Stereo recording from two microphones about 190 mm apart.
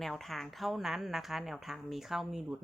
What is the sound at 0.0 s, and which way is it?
Speech, centre (ahead or behind).